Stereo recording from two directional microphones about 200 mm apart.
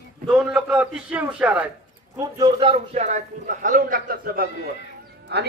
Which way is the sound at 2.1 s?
20° right (ahead or behind).